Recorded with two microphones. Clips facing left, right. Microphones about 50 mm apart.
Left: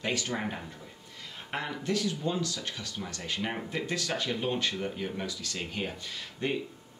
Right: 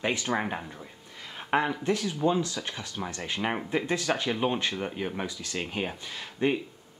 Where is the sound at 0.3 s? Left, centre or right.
Right.